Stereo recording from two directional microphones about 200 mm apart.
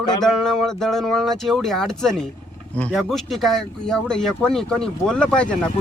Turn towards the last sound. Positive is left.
turn(degrees=5)  # may be behind; listen again after turning